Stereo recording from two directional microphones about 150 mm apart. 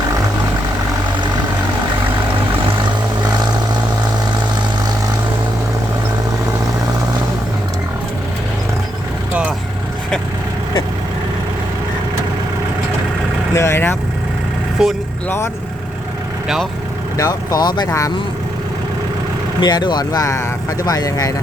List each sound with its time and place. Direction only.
13.5 s vehicle: 15° left (ahead or behind)
14.8 s vehicle: 5° right (ahead or behind)
17.2 s speech: 25° left (ahead or behind)
19.5 s speech: 30° left (ahead or behind)